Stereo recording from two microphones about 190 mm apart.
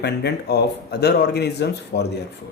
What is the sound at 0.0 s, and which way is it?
Speech, 60° left (ahead or behind).